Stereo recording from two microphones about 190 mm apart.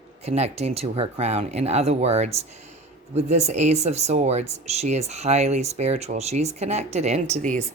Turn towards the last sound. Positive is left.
turn(degrees=-35)  # may be behind; listen again after turning